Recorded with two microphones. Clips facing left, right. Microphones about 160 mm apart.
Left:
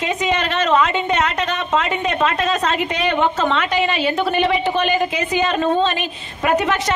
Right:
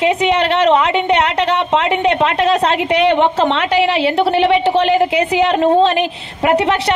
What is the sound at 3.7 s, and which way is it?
Speech, 80° right.